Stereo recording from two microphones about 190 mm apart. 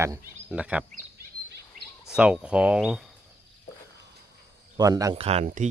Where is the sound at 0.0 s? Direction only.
10° right (ahead or behind).